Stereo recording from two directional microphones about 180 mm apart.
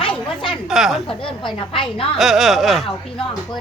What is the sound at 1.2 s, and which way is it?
Speech, 30° left (ahead or behind).